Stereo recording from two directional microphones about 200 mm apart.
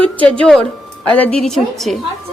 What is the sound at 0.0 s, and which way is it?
Speech, 5° left (ahead or behind).